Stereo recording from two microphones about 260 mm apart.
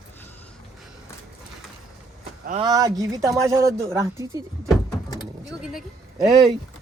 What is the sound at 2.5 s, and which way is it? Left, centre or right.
Speech, centre.